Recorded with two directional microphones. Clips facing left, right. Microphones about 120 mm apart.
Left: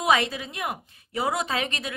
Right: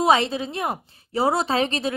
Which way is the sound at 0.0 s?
30° right (ahead or behind).